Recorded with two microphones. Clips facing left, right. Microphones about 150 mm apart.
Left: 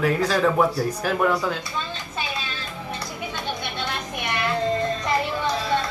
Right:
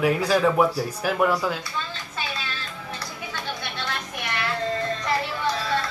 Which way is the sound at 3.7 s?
20° left (ahead or behind).